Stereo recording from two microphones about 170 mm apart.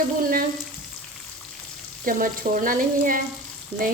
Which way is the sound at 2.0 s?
55° right (ahead or behind).